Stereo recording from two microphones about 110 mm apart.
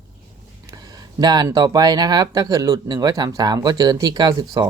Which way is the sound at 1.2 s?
40° right (ahead or behind).